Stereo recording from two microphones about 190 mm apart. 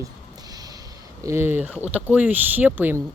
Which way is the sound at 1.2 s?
15° right (ahead or behind).